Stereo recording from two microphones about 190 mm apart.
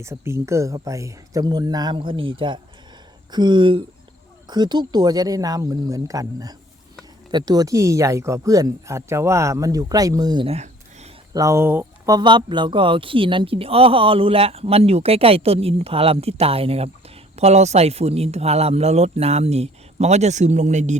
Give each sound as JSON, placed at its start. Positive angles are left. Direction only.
{"t": 0.0, "sound": "speech", "side_deg": -15}
{"t": 11.3, "sound": "a man's voice", "side_deg": -15}